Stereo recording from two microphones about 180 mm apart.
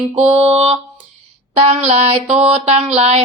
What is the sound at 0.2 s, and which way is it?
Music, 35° right (ahead or behind).